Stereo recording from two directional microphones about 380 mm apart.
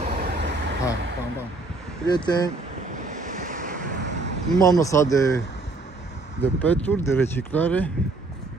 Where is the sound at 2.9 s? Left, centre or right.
Centre.